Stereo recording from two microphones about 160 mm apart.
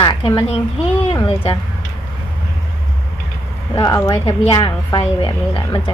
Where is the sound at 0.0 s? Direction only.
25° left (ahead or behind).